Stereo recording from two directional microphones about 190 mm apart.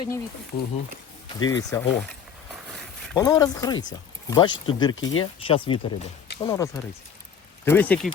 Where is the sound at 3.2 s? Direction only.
20° left (ahead or behind).